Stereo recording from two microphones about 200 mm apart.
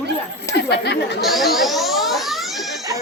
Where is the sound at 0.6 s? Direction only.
55° left (ahead or behind).